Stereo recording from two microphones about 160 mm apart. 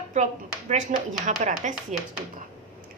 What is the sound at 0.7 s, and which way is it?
A woman's voice, 50° right (ahead or behind).